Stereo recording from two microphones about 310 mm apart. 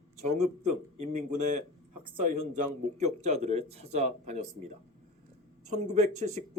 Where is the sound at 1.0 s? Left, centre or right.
Right.